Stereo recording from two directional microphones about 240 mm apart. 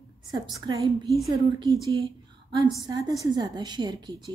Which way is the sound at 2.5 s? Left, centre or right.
Centre.